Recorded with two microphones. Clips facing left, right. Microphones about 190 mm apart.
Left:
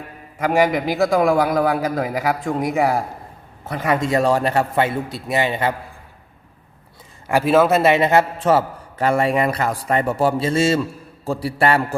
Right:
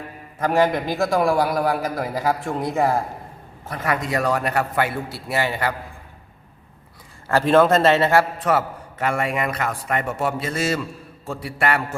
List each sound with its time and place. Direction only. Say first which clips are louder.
0.3 s a man's voice: left 2 dB; 10° left (ahead or behind)
3.8 s a man's voice: left 5 dB; 25° left (ahead or behind)
7.3 s a man's voice: left 1 dB; 10° left (ahead or behind); by 11.9 s 30° left (ahead or behind)